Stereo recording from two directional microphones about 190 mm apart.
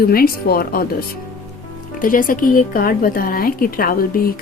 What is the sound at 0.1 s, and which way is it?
Speech, 50° left (ahead or behind).